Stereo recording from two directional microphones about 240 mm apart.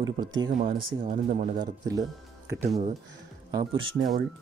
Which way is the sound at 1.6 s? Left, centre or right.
Centre.